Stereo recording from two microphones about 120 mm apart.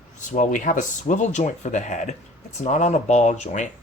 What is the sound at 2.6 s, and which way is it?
Speech, 75° left (ahead or behind).